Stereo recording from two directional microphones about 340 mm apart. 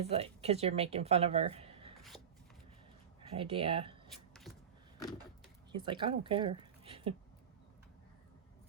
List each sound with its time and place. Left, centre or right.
0.0 s speech: centre
2.0 s a sound: centre
3.2 s speech: centre
5.7 s speech: centre